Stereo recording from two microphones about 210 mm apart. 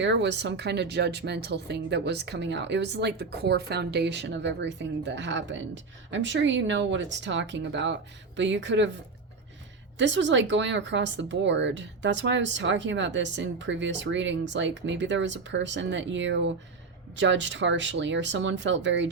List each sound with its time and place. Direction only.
0.0 s a woman's voice: 55° right (ahead or behind)
10.0 s a woman's voice: 60° right (ahead or behind)